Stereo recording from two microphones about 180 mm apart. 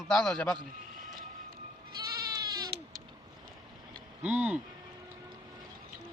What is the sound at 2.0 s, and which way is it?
Sheep, 20° right (ahead or behind).